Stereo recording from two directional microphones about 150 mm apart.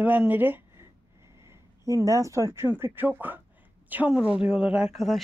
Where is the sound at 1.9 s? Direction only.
20° right (ahead or behind).